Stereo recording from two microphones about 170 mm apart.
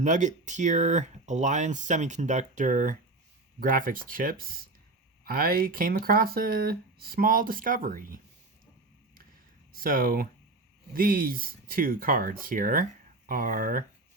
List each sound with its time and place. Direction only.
0.0 s speech: 45° right (ahead or behind)
9.7 s speech: 55° right (ahead or behind)